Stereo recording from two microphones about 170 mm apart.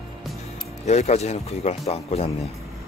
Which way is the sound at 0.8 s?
40° left (ahead or behind).